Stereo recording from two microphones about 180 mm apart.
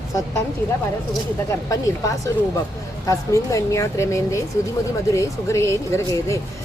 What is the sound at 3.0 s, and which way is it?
Speech, 15° left (ahead or behind).